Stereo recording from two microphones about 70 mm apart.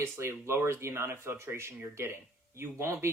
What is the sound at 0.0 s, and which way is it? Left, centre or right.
Speech, right.